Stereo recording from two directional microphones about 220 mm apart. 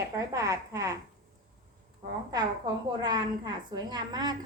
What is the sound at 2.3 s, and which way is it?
A woman's voice, 20° right (ahead or behind).